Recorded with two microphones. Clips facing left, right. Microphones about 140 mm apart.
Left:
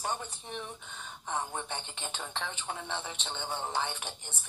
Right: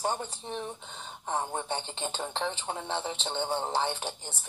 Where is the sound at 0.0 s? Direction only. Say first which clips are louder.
Right 4 dB; 35° right (ahead or behind).